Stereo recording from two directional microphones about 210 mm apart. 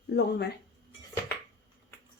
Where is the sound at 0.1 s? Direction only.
50° left (ahead or behind).